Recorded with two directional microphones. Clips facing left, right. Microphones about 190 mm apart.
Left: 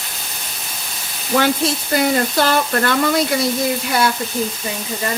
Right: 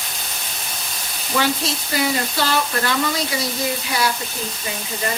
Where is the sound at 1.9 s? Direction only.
50° left (ahead or behind).